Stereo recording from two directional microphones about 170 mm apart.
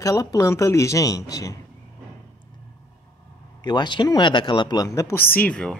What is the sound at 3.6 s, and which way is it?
Speech, 25° left (ahead or behind).